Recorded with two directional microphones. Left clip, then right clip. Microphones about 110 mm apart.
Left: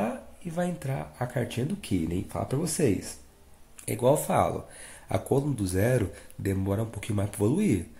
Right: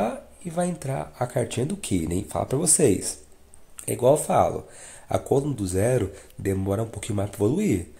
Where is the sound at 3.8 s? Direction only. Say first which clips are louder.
Right 4 dB; 25° right (ahead or behind).